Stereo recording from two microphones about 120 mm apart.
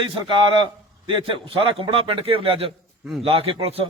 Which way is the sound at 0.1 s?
45° right (ahead or behind).